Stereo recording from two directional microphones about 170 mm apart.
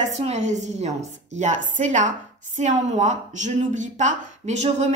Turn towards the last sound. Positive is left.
turn(degrees=-40)  # may be behind; listen again after turning